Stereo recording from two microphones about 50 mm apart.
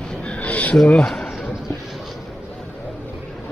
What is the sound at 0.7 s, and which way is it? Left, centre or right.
Speech, centre.